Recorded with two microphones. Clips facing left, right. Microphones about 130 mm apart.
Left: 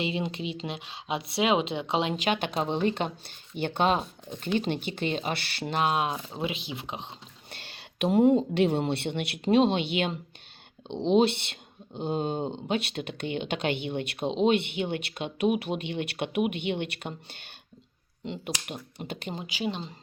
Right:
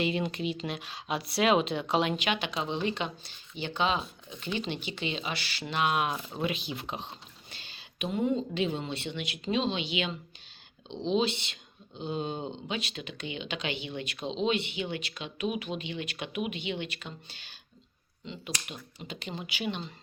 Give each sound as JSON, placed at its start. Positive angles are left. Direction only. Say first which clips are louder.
{"t": 0.0, "sound": "speech", "louder": "right 1 dB", "side_deg": 25}
{"t": 2.1, "sound": "speech", "louder": "left 4 dB", "side_deg": 45}
{"t": 5.7, "sound": "speech", "louder": "left 2 dB", "side_deg": 35}
{"t": 7.5, "sound": "speech", "louder": "left 5 dB", "side_deg": 65}
{"t": 19.6, "sound": "speech", "louder": "left 3 dB", "side_deg": 30}